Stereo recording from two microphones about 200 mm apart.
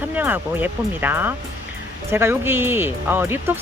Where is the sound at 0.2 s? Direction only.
10° right (ahead or behind).